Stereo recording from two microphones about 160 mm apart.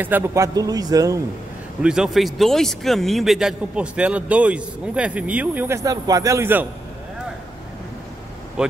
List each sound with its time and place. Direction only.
0.0 s a man's voice: 15° right (ahead or behind)
1.8 s speech: 5° right (ahead or behind)
8.6 s speech: 5° right (ahead or behind)